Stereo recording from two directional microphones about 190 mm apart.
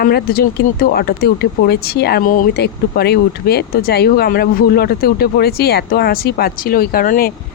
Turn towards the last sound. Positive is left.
turn(degrees=50)  # may be behind; listen again after turning